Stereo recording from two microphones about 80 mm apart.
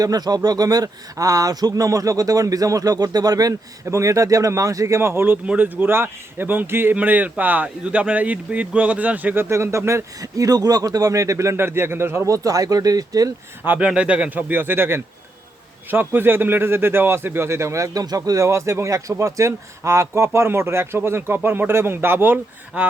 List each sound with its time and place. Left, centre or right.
0.0 s speech: right
3.8 s a man's voice: right
13.7 s a man's voice: centre